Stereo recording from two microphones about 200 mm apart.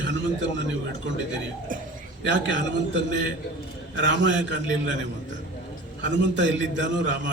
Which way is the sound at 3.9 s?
65° right (ahead or behind).